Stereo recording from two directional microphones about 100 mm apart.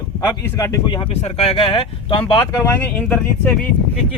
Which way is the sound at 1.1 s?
90° left.